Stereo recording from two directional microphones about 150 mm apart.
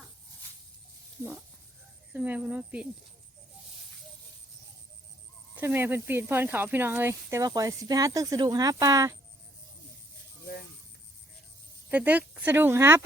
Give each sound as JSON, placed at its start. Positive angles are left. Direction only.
{"t": 2.1, "sound": "speech", "side_deg": -10}
{"t": 5.5, "sound": "speech", "side_deg": -15}
{"t": 11.9, "sound": "speech", "side_deg": -10}